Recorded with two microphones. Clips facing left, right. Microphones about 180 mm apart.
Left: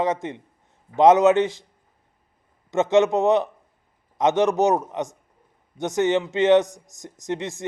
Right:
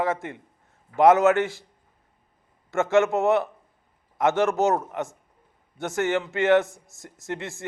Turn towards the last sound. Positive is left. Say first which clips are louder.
# left 4 dB
turn(degrees=20)  # may be behind; listen again after turning